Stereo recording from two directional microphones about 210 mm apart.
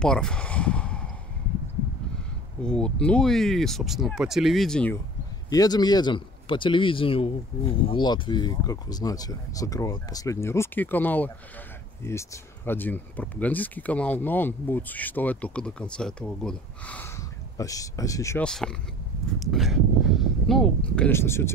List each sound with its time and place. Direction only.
0.0 s speech: 5° left (ahead or behind)
2.6 s speech: 5° left (ahead or behind)
5.5 s speech: 20° left (ahead or behind)
18.5 s speech: centre (ahead or behind)